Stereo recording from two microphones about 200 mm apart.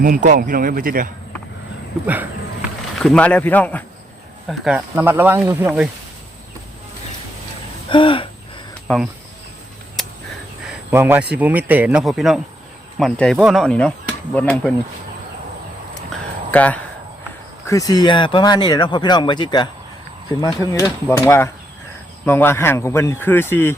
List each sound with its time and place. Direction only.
0.0 s speech: 40° right (ahead or behind)
2.0 s a sound: 5° right (ahead or behind)
3.0 s speech: 5° left (ahead or behind)
4.4 s speech: 5° right (ahead or behind)
7.9 s speech: 25° left (ahead or behind)
8.9 s speech: 5° left (ahead or behind)
10.7 s a sound: 10° right (ahead or behind)
11.3 s speech: 10° right (ahead or behind)
16.5 s speech: 5° left (ahead or behind)
17.7 s speech: 20° left (ahead or behind)